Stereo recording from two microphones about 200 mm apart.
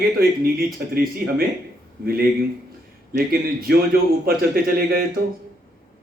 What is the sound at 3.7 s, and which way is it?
A man's voice, 55° right (ahead or behind).